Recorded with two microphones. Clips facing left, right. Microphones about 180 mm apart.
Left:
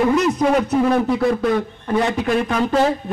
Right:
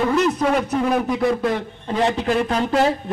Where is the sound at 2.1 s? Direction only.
30° right (ahead or behind).